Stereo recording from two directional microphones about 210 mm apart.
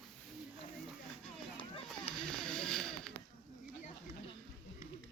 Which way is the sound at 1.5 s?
25° left (ahead or behind).